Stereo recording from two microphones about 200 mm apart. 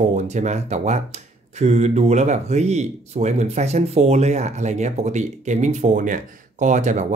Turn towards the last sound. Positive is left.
turn(degrees=-35)  # may be behind; listen again after turning